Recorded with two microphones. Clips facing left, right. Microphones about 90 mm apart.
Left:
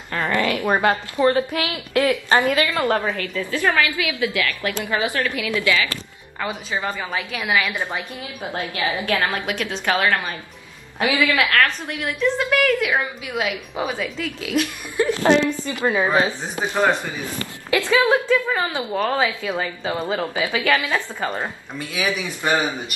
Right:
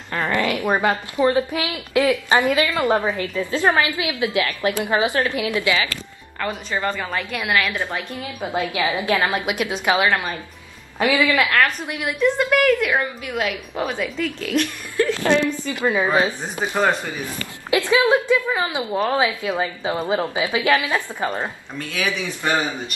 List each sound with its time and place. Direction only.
0.1 s a woman's voice: 15° right (ahead or behind)
6.4 s a woman's voice: 5° left (ahead or behind)
8.7 s a woman's voice: 20° right (ahead or behind)
11.3 s a woman's voice: 5° right (ahead or behind)
15.0 s a woman's voice: 20° left (ahead or behind)
17.6 s a woman's voice: 15° right (ahead or behind)
21.3 s a woman's voice: 5° left (ahead or behind)
22.0 s a woman's voice: 20° left (ahead or behind)